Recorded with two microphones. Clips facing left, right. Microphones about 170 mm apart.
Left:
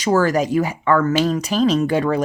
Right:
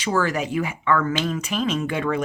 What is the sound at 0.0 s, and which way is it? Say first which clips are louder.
Speech: left 6 dB; 40° left (ahead or behind).